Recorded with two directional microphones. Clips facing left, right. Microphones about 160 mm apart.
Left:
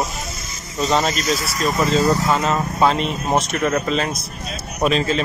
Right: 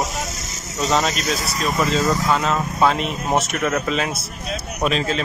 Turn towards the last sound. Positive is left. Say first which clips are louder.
# left 3 dB
turn(degrees=0)  # may be behind; listen again after turning